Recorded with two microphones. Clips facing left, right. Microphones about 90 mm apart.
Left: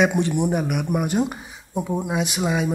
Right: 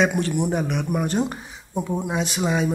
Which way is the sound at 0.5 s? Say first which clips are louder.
Left 1 dB; 10° left (ahead or behind).